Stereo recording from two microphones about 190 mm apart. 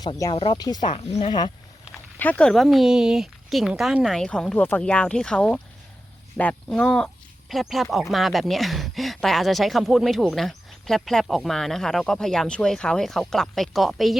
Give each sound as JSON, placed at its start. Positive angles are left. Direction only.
{"t": 0.0, "sound": "speech", "side_deg": 20}
{"t": 0.9, "sound": "speech", "side_deg": 35}
{"t": 2.1, "sound": "speech", "side_deg": 10}